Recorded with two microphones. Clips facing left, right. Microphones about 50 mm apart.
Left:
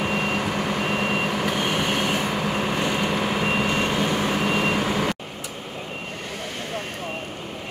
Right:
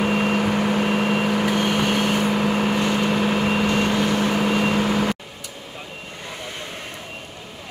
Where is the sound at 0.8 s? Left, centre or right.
Centre.